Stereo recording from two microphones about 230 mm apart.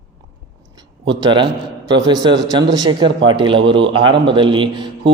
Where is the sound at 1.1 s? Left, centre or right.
Centre.